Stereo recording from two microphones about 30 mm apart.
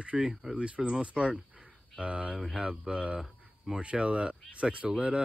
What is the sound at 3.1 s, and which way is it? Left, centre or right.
Cricket, right.